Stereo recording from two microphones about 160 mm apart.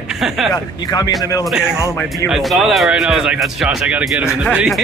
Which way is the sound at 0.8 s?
25° left (ahead or behind).